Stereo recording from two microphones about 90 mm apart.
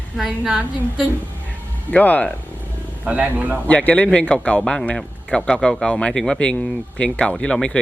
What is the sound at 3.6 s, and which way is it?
A woman's voice, 15° left (ahead or behind).